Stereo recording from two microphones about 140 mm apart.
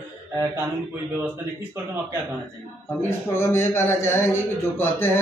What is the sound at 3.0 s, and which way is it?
Speech, 15° left (ahead or behind).